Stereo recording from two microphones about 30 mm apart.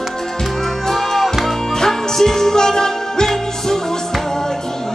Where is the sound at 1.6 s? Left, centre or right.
Centre.